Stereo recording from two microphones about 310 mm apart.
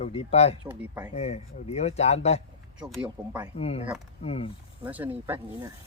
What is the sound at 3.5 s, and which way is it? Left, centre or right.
Speech, centre.